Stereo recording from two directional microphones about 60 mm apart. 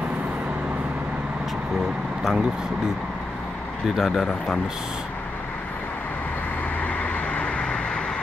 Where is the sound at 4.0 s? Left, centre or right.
Centre.